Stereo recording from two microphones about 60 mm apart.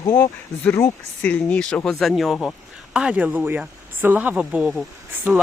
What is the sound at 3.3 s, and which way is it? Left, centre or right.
A woman's voice, right.